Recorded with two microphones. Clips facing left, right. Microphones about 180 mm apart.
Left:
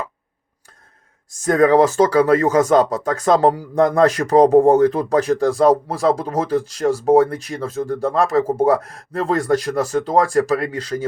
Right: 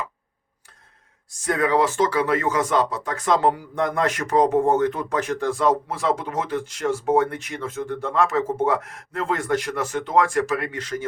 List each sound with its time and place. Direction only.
1.3 s speech: 45° left (ahead or behind)